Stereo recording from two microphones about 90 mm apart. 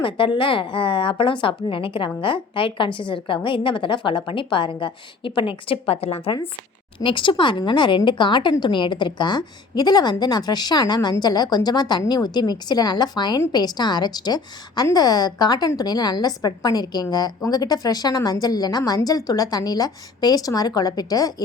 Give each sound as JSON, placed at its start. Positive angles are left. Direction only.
{"t": 0.3, "sound": "a woman's voice", "side_deg": 70}
{"t": 7.0, "sound": "a woman's voice", "side_deg": 65}